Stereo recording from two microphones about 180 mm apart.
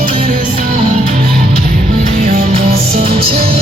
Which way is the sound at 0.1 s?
40° right (ahead or behind).